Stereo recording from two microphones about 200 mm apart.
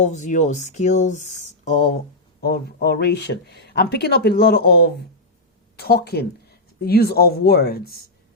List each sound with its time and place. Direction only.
0.0 s speech: 35° left (ahead or behind)
2.4 s speech: 50° left (ahead or behind)